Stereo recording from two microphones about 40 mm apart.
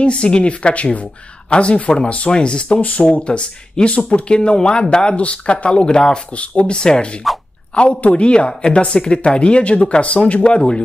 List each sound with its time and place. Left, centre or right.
0.0 s speech: left
2.8 s speech: left
3.3 s speech: left